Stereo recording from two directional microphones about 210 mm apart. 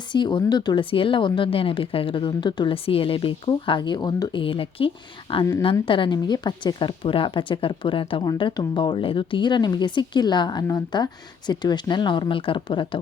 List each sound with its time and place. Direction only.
0.1 s a woman's voice: 20° left (ahead or behind)